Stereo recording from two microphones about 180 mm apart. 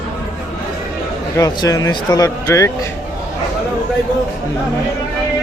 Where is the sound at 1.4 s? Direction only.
20° left (ahead or behind).